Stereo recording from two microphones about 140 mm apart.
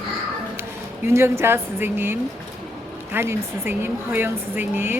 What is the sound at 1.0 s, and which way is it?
Speech, 20° right (ahead or behind).